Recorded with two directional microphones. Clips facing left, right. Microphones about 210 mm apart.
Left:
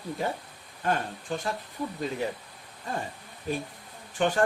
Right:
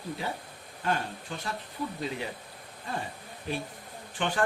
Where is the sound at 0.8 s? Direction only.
45° left (ahead or behind).